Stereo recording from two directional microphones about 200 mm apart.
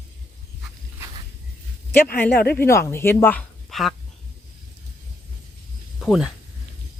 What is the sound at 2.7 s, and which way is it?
Speech, 10° left (ahead or behind).